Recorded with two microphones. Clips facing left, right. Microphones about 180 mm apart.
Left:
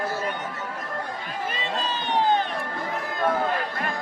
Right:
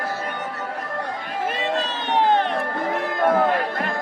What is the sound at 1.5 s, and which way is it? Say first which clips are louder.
Music: right 4 dB; 70° right (ahead or behind).